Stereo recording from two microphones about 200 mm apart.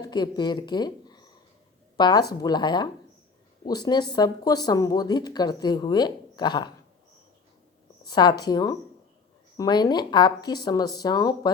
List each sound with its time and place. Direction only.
0.0 s speech: 20° left (ahead or behind)
8.0 s speech: 20° left (ahead or behind)